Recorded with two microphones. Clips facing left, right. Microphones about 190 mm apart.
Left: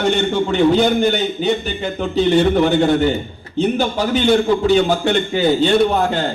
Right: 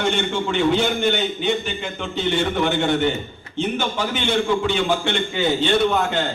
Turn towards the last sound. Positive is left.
turn(degrees=35)  # may be behind; listen again after turning